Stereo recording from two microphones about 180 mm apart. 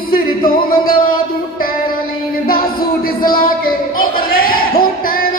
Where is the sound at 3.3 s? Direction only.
55° left (ahead or behind).